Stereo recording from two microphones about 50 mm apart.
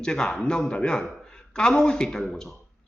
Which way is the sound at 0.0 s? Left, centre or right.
Centre.